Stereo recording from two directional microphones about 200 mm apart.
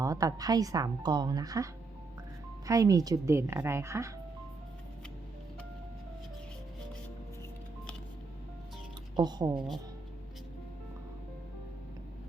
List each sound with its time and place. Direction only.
0.0 s a woman's voice: 15° right (ahead or behind)
9.1 s speech: 20° right (ahead or behind)